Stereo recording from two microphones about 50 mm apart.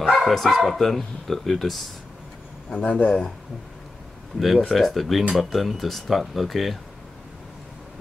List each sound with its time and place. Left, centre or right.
0.0 s bow-wow: centre
0.7 s speech: centre
2.7 s speech: left
4.4 s speech: centre